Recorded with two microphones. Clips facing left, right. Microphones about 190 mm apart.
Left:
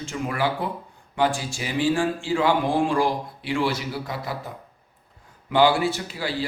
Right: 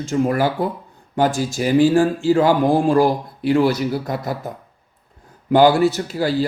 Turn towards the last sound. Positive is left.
turn(degrees=-40)  # may be behind; listen again after turning